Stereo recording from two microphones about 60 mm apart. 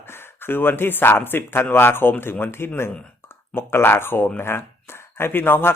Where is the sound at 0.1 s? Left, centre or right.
Left.